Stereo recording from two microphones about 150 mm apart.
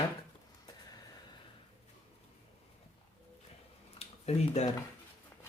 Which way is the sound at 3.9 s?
45° left (ahead or behind).